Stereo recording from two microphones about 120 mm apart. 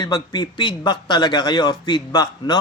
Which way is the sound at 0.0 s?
35° left (ahead or behind).